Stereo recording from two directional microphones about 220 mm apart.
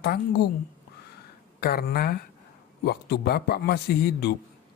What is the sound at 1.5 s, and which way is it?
Speech, 45° left (ahead or behind).